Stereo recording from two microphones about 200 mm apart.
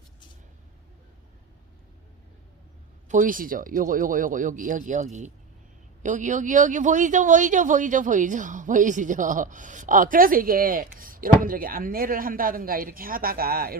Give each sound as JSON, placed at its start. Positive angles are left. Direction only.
{"t": 3.1, "sound": "a man's voice", "side_deg": -40}